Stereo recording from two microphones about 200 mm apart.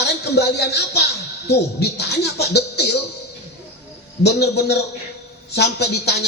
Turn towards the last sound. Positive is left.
turn(degrees=55)  # may be behind; listen again after turning